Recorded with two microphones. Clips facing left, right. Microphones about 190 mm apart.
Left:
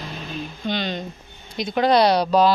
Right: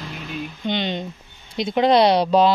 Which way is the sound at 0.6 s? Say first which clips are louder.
Right 2 dB; 20° right (ahead or behind).